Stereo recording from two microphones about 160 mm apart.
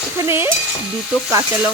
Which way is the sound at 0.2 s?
15° right (ahead or behind).